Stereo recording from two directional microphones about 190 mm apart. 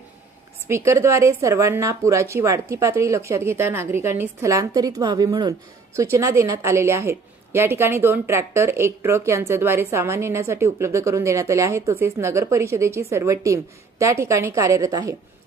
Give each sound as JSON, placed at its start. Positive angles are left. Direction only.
{"t": 0.7, "sound": "a woman's voice", "side_deg": -15}